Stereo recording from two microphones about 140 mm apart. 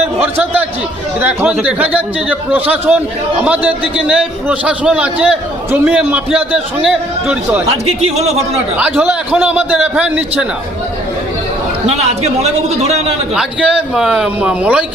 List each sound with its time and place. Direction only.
1.2 s a man's voice: 15° right (ahead or behind)
7.7 s a man's voice: 45° right (ahead or behind)
8.7 s a man's voice: 10° right (ahead or behind)
11.9 s a man's voice: 50° right (ahead or behind)
13.3 s a man's voice: 5° right (ahead or behind)